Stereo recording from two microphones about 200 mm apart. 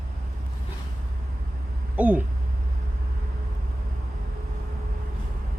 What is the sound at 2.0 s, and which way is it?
Speech, 5° right (ahead or behind).